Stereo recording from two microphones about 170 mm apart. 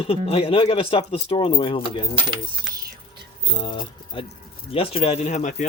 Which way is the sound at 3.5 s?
30° left (ahead or behind).